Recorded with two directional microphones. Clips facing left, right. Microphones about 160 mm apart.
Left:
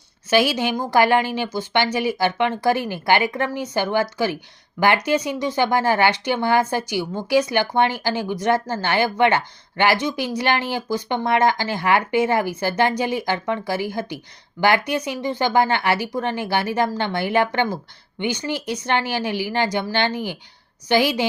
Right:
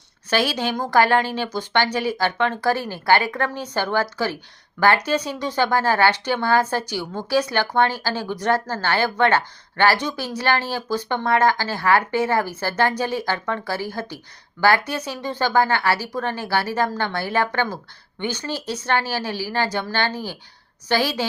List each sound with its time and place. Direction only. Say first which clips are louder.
0.3 s speech: left 3 dB; 10° left (ahead or behind)